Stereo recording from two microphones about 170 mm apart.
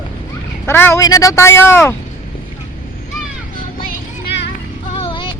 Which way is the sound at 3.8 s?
60° left (ahead or behind).